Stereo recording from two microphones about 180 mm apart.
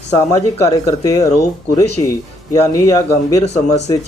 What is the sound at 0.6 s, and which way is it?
Speech, 20° left (ahead or behind).